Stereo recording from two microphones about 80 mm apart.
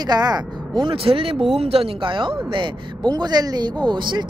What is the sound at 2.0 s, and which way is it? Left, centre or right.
Speech, right.